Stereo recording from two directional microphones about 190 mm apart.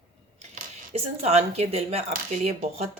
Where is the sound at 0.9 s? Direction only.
35° right (ahead or behind).